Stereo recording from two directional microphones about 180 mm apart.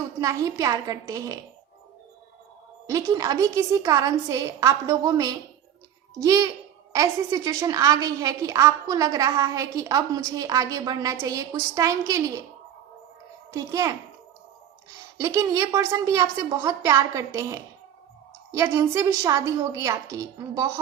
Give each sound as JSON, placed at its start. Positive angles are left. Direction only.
{"t": 0.2, "sound": "a woman's voice", "side_deg": -20}
{"t": 2.8, "sound": "a woman's voice", "side_deg": -20}
{"t": 13.5, "sound": "a woman's voice", "side_deg": -20}
{"t": 15.2, "sound": "a woman's voice", "side_deg": -15}